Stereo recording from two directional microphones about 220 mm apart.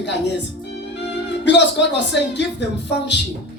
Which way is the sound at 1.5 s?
50° left (ahead or behind).